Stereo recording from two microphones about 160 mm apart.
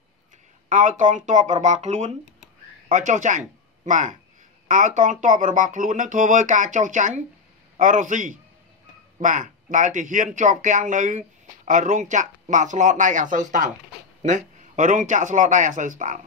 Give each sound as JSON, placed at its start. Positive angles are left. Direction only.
{"t": 0.7, "sound": "speech", "side_deg": -55}